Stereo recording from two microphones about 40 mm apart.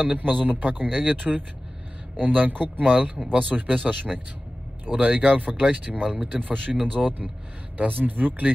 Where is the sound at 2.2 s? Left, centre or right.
Right.